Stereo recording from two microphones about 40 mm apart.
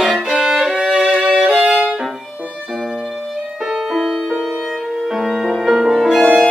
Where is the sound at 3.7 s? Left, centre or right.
Centre.